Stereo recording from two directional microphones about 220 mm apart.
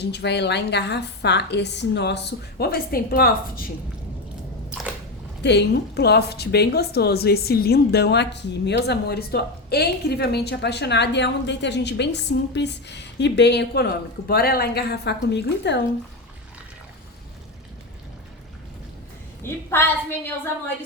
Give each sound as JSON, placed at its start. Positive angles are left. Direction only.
{"t": 0.0, "sound": "a woman's voice", "side_deg": 50}
{"t": 5.4, "sound": "a woman's voice", "side_deg": 50}
{"t": 19.4, "sound": "a woman's voice", "side_deg": 10}